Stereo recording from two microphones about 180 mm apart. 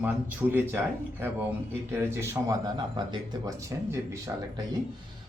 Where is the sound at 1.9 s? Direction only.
15° right (ahead or behind).